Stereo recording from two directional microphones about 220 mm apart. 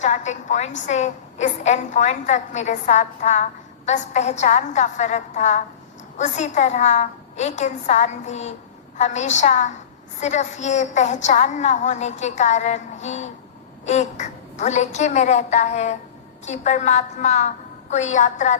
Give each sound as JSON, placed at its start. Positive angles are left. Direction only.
{"t": 0.0, "sound": "a woman's voice", "side_deg": 35}